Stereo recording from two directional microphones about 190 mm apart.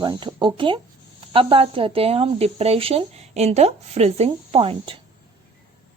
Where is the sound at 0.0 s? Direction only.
25° right (ahead or behind).